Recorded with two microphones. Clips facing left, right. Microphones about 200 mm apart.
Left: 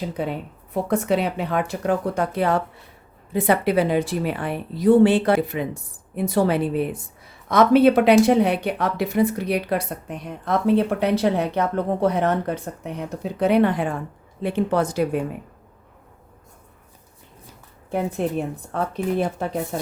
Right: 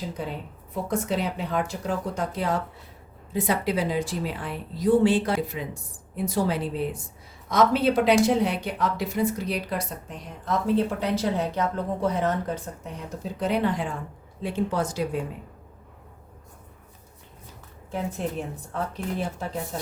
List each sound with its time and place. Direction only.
0.2 s speech: 65° left (ahead or behind)
17.9 s speech: 60° left (ahead or behind)